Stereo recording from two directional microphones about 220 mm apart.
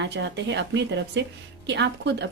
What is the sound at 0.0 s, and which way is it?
Speech, 55° right (ahead or behind).